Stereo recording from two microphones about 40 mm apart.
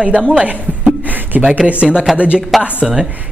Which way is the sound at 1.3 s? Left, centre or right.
Right.